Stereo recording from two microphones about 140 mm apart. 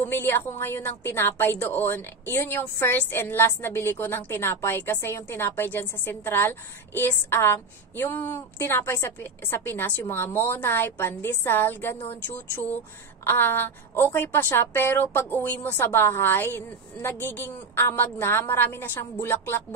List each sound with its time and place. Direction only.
0.0 s a woman's voice: 15° left (ahead or behind)
13.2 s a woman's voice: 15° left (ahead or behind)